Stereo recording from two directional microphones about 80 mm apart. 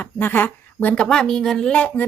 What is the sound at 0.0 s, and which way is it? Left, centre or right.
Speech, left.